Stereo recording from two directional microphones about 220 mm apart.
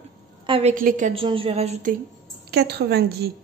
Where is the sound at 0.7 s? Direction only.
40° right (ahead or behind).